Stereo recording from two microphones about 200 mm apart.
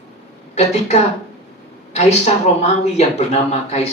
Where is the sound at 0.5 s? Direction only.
35° left (ahead or behind).